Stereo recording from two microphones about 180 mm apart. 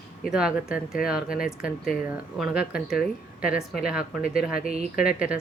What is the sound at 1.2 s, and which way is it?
Speech, 50° left (ahead or behind).